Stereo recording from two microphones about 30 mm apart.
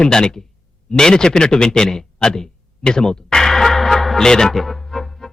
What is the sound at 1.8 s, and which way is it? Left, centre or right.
Speech, centre.